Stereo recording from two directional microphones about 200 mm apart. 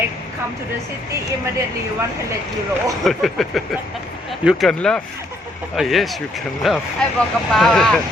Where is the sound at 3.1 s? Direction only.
Centre (ahead or behind).